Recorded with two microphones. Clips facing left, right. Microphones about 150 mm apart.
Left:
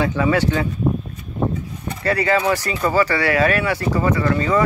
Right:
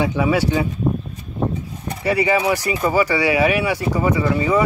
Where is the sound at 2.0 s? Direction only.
10° right (ahead or behind).